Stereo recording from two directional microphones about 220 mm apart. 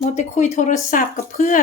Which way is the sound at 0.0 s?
30° left (ahead or behind).